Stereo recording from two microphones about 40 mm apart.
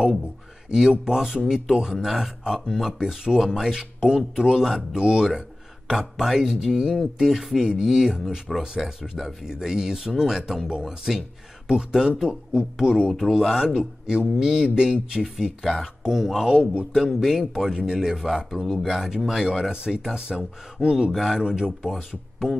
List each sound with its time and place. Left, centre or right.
0.7 s speech: centre
11.1 s speech: centre
13.7 s speech: centre
15.6 s speech: centre; by 21.1 s right
21.1 s speech: centre
21.4 s speech: centre